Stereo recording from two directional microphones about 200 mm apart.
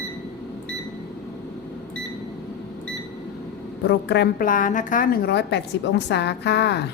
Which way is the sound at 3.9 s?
55° left (ahead or behind).